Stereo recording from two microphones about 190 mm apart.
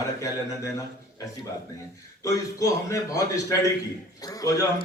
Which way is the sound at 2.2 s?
15° left (ahead or behind).